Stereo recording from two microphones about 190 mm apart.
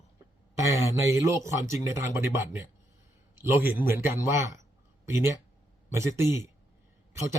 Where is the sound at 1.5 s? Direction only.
15° right (ahead or behind).